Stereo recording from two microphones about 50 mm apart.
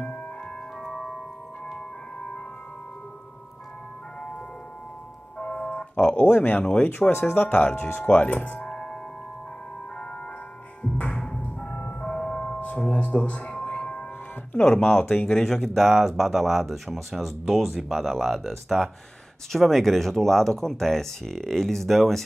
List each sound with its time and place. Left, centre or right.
5.4 s tubular bells: left
6.8 s speech: left
8.1 s speech: left
11.0 s music: left
14.5 s speech: left
15.2 s speech: centre